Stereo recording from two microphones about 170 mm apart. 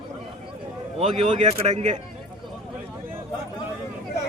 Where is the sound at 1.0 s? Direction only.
35° right (ahead or behind).